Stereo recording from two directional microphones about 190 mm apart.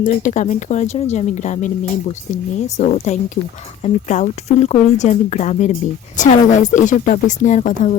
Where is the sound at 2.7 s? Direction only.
35° left (ahead or behind).